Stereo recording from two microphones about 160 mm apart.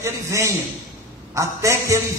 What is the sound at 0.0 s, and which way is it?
A man's voice, 20° right (ahead or behind).